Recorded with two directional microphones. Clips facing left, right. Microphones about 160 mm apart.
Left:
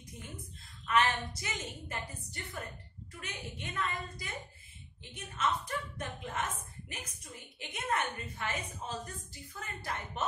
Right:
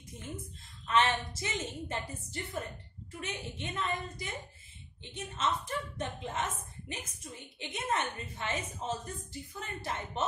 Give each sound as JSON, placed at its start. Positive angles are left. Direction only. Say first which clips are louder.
{"t": 0.8, "sound": "a woman's voice", "louder": "right 1 dB", "side_deg": -25}